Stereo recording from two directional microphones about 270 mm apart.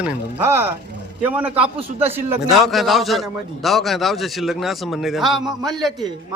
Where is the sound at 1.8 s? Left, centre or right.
Right.